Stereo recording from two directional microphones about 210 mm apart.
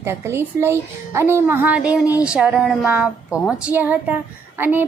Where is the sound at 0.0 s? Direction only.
10° right (ahead or behind).